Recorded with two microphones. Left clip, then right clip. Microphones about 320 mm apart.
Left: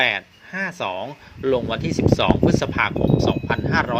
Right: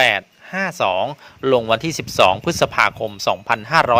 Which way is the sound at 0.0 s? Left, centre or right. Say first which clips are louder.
Right 4 dB; right.